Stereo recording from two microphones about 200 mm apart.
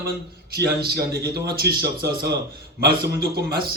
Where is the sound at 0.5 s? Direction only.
55° right (ahead or behind).